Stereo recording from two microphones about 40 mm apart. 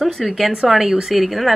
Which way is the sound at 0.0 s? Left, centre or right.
Centre.